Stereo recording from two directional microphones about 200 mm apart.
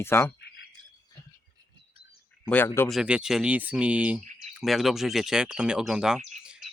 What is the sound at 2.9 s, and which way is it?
Speech, 5° right (ahead or behind).